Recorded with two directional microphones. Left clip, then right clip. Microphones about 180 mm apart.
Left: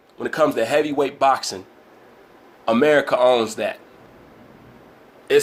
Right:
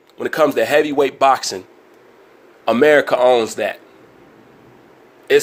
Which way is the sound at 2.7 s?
35° right (ahead or behind).